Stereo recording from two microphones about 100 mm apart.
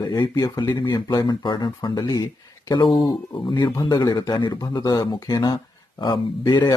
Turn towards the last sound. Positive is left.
turn(degrees=50)  # may be behind; listen again after turning